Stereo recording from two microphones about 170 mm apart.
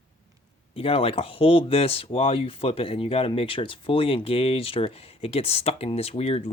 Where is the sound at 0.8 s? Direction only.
35° left (ahead or behind).